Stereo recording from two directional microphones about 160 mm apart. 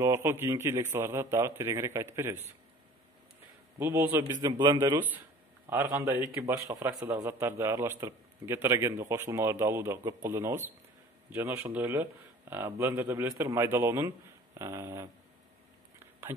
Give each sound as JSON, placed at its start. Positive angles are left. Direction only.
{"t": 0.0, "sound": "speech", "side_deg": -15}
{"t": 3.8, "sound": "speech", "side_deg": -15}
{"t": 4.5, "sound": "a man's voice", "side_deg": -25}